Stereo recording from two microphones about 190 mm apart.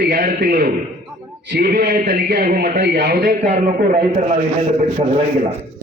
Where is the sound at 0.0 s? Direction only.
45° right (ahead or behind).